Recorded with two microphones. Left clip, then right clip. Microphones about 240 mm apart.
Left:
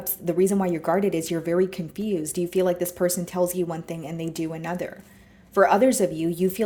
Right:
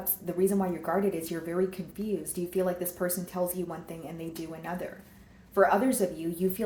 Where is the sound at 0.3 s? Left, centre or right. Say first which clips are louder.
Left 6 dB; left.